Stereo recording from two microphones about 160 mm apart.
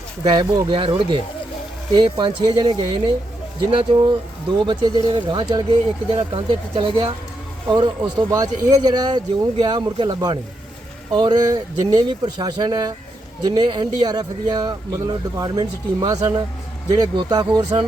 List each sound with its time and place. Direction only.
0.3 s speech: 25° right (ahead or behind)